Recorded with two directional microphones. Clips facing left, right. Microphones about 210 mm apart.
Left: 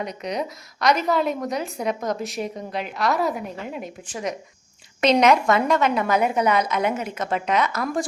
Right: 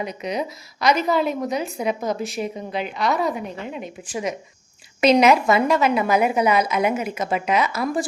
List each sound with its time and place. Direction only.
0.0 s a woman's voice: 5° right (ahead or behind)